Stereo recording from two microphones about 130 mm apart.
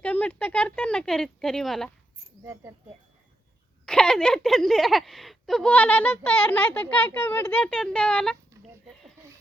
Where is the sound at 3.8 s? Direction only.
5° left (ahead or behind).